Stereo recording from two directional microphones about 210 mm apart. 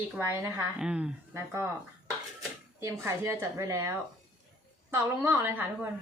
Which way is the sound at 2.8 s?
10° right (ahead or behind).